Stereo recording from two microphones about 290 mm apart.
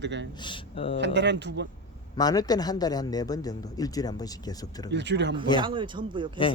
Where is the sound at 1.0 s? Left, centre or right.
Right.